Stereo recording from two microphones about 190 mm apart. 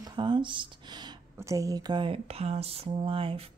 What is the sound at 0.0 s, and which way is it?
Speech, 25° right (ahead or behind).